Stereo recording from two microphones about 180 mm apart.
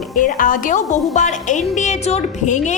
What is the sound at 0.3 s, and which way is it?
A woman's voice, 50° left (ahead or behind).